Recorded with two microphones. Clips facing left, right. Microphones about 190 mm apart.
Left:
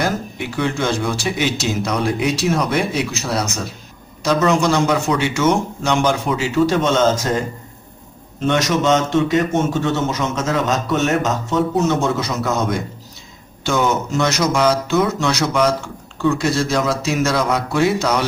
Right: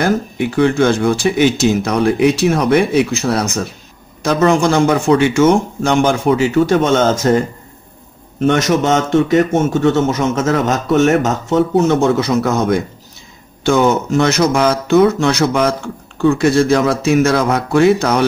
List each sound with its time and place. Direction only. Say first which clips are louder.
0.6 s a man's voice: right 7 dB; 55° right (ahead or behind)
8.5 s a man's voice: right 3 dB; 55° right (ahead or behind)